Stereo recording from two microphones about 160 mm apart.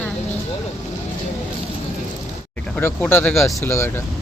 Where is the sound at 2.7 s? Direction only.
10° left (ahead or behind).